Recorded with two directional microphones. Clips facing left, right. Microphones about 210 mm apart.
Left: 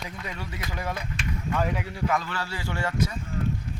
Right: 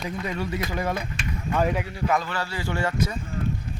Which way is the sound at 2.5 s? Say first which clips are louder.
Right 4 dB; 40° right (ahead or behind).